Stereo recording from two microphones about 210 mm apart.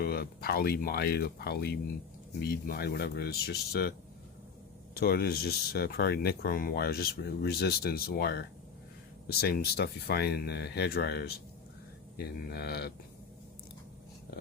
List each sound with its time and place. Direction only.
0.0 s speech: 45° left (ahead or behind)
4.9 s speech: 50° left (ahead or behind)